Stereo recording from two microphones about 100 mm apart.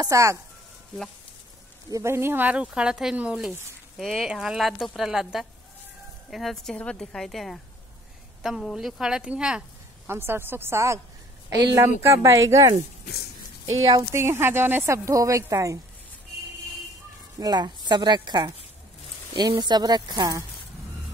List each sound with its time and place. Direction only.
0.0 s speech: 35° right (ahead or behind)
1.9 s speech: 30° right (ahead or behind); by 9.7 s 10° right (ahead or behind)
10.0 s speech: 25° right (ahead or behind)
14.1 s speech: 25° right (ahead or behind)
17.4 s speech: 45° right (ahead or behind)
19.6 s speech: 45° right (ahead or behind)